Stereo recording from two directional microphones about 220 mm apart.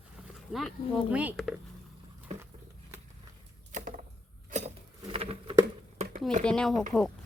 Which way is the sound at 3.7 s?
35° right (ahead or behind).